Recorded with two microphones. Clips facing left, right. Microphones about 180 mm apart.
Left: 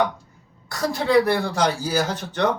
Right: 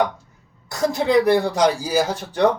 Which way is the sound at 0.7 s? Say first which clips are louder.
Right 1 dB; 20° right (ahead or behind).